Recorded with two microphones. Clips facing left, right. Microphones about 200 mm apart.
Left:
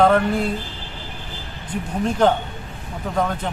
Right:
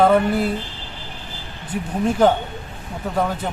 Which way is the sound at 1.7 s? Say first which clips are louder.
Right 2 dB; 10° right (ahead or behind).